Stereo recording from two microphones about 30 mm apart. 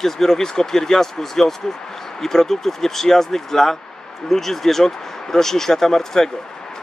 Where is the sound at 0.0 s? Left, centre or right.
Centre.